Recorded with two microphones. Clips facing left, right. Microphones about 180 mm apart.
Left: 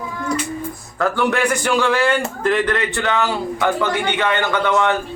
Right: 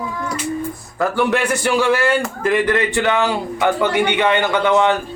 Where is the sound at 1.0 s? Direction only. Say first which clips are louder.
Right 1 dB; 5° right (ahead or behind).